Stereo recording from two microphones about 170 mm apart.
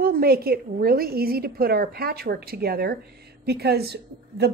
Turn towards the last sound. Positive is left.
turn(degrees=-70)  # may be behind; listen again after turning